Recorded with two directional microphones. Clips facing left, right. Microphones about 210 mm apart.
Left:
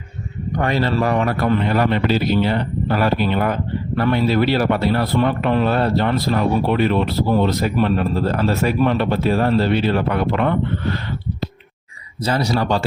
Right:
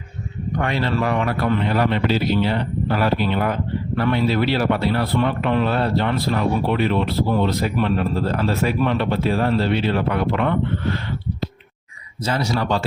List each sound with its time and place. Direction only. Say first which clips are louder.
0.6 s a man's voice: left 3 dB; 40° left (ahead or behind)
12.2 s speech: left 3 dB; 35° left (ahead or behind)